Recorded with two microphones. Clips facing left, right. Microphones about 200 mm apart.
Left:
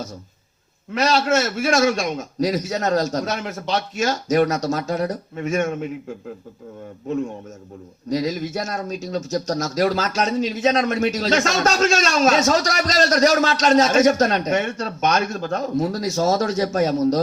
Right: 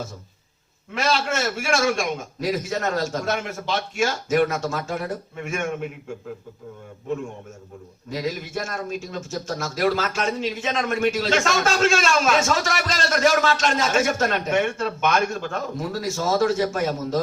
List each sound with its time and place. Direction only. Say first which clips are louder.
0.9 s speech: left 5 dB; 40° left (ahead or behind)
8.1 s speech: left 5 dB; 40° left (ahead or behind)